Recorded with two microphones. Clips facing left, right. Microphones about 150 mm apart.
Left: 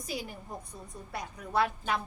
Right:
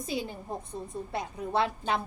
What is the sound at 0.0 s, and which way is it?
A woman's voice, 25° right (ahead or behind).